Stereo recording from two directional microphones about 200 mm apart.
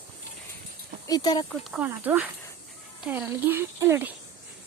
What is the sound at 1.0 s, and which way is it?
Speech, 20° left (ahead or behind).